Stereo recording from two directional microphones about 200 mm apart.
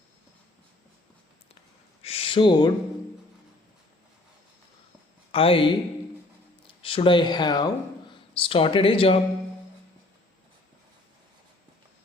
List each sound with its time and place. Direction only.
2.0 s a sound: 30° left (ahead or behind)
5.3 s speech: 25° left (ahead or behind)
6.8 s speech: 25° left (ahead or behind)